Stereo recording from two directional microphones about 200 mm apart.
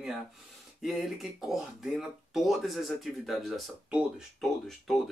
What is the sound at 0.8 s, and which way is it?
Speech, centre (ahead or behind).